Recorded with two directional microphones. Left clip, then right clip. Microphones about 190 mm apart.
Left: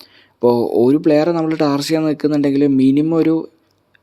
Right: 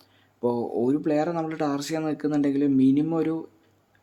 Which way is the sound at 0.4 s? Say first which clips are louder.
Left 12 dB; 40° left (ahead or behind).